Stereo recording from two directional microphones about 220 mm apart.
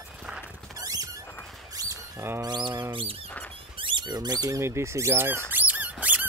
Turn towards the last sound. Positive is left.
turn(degrees=-5)  # may be behind; listen again after turning